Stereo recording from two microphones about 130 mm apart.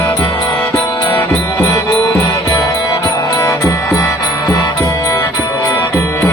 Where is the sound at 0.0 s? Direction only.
20° left (ahead or behind).